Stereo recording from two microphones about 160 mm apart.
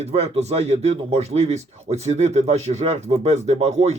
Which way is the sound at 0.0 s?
40° right (ahead or behind).